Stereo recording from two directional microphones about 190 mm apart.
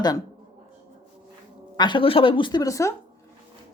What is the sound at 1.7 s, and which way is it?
Speech, 25° left (ahead or behind).